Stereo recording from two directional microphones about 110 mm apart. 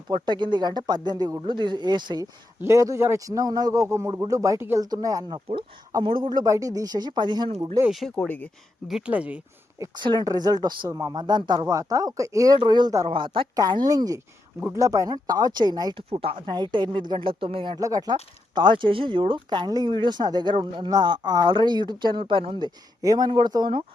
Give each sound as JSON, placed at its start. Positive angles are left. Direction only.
{"t": 0.1, "sound": "speech", "side_deg": -45}
{"t": 2.6, "sound": "a man's voice", "side_deg": -25}
{"t": 4.8, "sound": "speech", "side_deg": -35}
{"t": 6.0, "sound": "speech", "side_deg": -50}
{"t": 6.4, "sound": "speech", "side_deg": -30}
{"t": 7.9, "sound": "speech", "side_deg": 0}
{"t": 8.1, "sound": "speech", "side_deg": 15}
{"t": 8.9, "sound": "speech", "side_deg": -5}
{"t": 9.7, "sound": "speech", "side_deg": -30}
{"t": 10.0, "sound": "speech", "side_deg": -40}
{"t": 12.5, "sound": "speech", "side_deg": -40}
{"t": 13.1, "sound": "speech", "side_deg": -50}
{"t": 13.6, "sound": "speech", "side_deg": -35}
{"t": 17.7, "sound": "speech", "side_deg": -35}